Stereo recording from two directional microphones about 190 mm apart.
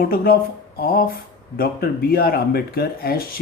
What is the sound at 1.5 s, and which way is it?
Speech, 50° left (ahead or behind).